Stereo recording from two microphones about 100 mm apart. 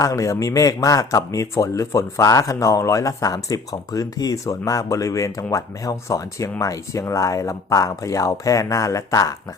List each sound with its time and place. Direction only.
0.0 s speech: 35° left (ahead or behind)